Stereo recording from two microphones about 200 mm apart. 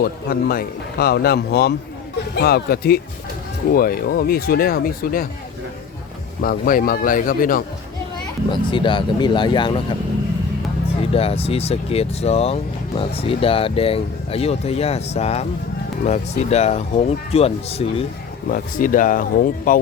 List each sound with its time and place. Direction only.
0.0 s a man's voice: 50° left (ahead or behind)
6.4 s a man's voice: 45° left (ahead or behind)
8.4 s speech: 25° left (ahead or behind)
10.8 s speech: 30° left (ahead or behind)
18.5 s a man's voice: 45° left (ahead or behind)